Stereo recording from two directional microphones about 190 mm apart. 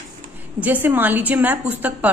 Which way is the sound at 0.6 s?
10° right (ahead or behind).